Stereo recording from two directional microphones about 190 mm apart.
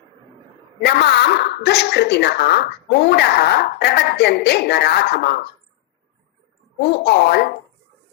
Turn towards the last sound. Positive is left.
turn(degrees=55)  # may be behind; listen again after turning